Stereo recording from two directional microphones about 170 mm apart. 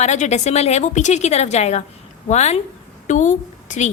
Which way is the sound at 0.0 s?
40° left (ahead or behind).